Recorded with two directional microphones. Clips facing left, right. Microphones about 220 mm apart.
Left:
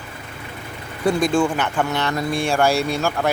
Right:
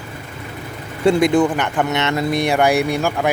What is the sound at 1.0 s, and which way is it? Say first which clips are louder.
Speech: right 4 dB; 20° right (ahead or behind).